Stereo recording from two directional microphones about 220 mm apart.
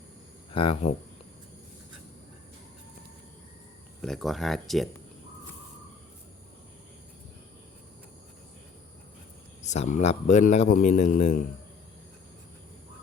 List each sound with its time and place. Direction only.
0.5 s speech: 25° left (ahead or behind)
4.0 s speech: centre (ahead or behind)
9.6 s a man's voice: 30° left (ahead or behind)